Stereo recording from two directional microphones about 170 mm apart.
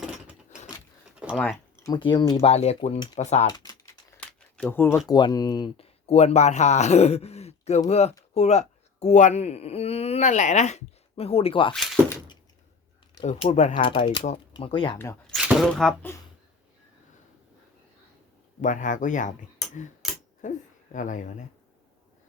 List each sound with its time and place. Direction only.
0.0 s keys jangling: 5° right (ahead or behind)
1.8 s speech: 25° left (ahead or behind)
2.5 s speech: 40° left (ahead or behind)
3.6 s typing: 20° left (ahead or behind)
4.2 s a sound: 5° left (ahead or behind)
5.0 s speech: 25° left (ahead or behind)
13.2 s speech: 45° left (ahead or behind)
13.8 s speech: 30° left (ahead or behind)
15.3 s a sound: 5° right (ahead or behind)
18.6 s speech: 50° left (ahead or behind)
20.4 s speech: 45° left (ahead or behind)